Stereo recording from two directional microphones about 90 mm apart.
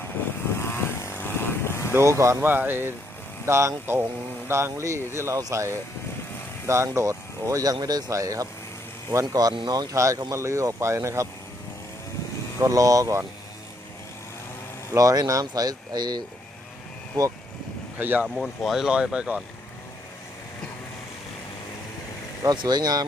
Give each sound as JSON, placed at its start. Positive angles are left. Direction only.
{"t": 0.4, "sound": "vehicle", "side_deg": 25}
{"t": 1.9, "sound": "speech", "side_deg": -30}
{"t": 2.3, "sound": "speech", "side_deg": -20}
{"t": 3.4, "sound": "speech", "side_deg": -35}
{"t": 9.9, "sound": "speech", "side_deg": -35}
{"t": 12.6, "sound": "speech", "side_deg": -40}
{"t": 14.9, "sound": "speech", "side_deg": -45}
{"t": 17.9, "sound": "speech", "side_deg": -20}
{"t": 18.3, "sound": "speech", "side_deg": 0}
{"t": 22.5, "sound": "speech", "side_deg": -50}